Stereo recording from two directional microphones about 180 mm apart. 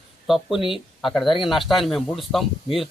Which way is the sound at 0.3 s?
Centre (ahead or behind).